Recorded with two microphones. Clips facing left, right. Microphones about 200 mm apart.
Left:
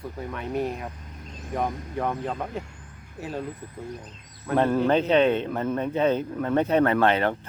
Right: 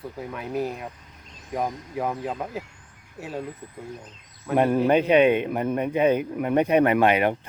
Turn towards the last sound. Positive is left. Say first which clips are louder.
# right 2 dB
turn(degrees=-15)  # may be behind; listen again after turning